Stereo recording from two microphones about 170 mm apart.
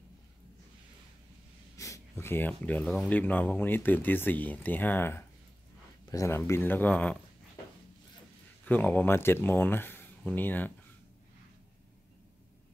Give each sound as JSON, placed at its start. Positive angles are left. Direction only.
{"t": 1.8, "sound": "speech", "side_deg": 15}
{"t": 8.6, "sound": "speech", "side_deg": 10}